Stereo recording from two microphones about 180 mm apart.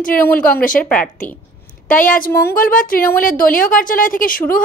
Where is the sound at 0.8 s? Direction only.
5° left (ahead or behind).